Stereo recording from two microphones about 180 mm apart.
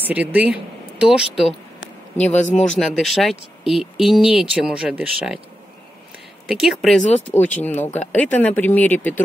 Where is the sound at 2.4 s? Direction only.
40° left (ahead or behind).